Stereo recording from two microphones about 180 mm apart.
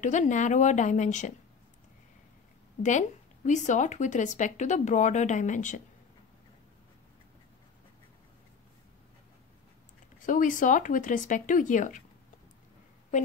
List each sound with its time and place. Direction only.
0.0 s a woman's voice: 40° left (ahead or behind)
2.8 s speech: 40° left (ahead or behind)
10.2 s speech: 45° left (ahead or behind)